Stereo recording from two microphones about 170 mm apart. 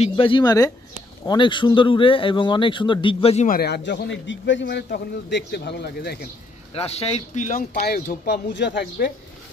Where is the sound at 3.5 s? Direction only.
70° left (ahead or behind).